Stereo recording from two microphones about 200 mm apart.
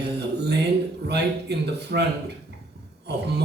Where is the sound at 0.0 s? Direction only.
55° right (ahead or behind).